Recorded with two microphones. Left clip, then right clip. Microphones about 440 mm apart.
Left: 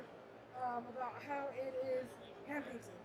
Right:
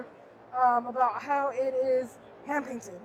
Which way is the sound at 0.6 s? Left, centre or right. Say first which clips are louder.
Right 18 dB; right.